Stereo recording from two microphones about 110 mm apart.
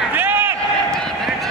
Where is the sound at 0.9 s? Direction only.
5° left (ahead or behind).